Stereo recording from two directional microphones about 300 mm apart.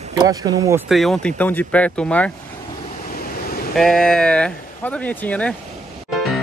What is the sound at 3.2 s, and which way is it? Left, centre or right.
Vehicle, left.